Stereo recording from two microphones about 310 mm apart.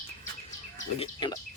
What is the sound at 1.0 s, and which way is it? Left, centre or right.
Speech, centre.